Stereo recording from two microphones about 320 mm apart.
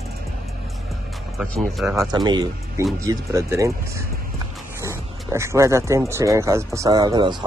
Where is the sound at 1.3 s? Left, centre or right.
Centre.